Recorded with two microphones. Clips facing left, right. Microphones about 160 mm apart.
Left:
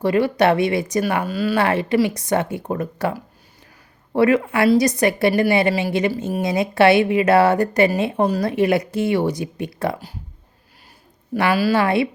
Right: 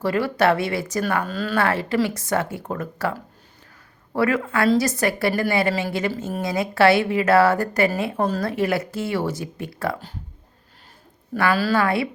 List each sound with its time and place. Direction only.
0.0 s a woman's voice: 20° left (ahead or behind)
11.3 s a woman's voice: 15° left (ahead or behind)